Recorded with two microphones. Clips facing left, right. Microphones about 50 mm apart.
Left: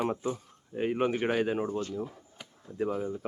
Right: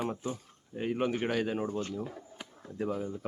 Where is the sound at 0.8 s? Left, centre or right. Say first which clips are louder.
Left 3 dB; centre.